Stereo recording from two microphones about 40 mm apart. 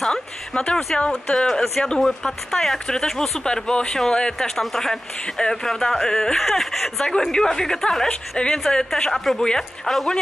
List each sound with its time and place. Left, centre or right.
0.0 s a sound: centre
0.9 s a woman's voice: left
4.6 s speech: centre
5.2 s speech: centre
8.1 s a woman's voice: left